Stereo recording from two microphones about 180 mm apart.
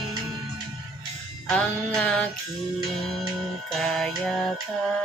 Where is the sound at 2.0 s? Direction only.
5° left (ahead or behind).